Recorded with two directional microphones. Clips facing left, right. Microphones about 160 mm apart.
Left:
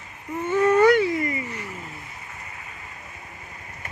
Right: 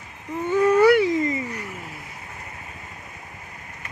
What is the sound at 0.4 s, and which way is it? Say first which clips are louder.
Dog: right 1 dB; 10° right (ahead or behind).